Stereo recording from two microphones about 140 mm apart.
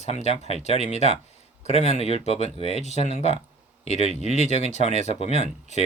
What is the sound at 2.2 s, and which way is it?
Speech, 50° left (ahead or behind).